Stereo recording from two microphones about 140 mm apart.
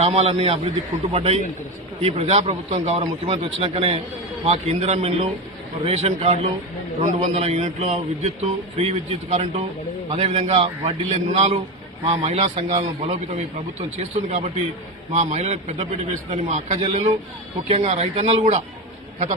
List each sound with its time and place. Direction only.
0.0 s a man's voice: 50° right (ahead or behind)
16.8 s speech: 40° right (ahead or behind)
17.7 s speech: 50° right (ahead or behind)